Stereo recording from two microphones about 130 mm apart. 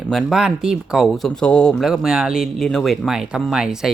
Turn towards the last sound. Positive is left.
turn(degrees=-5)  # may be behind; listen again after turning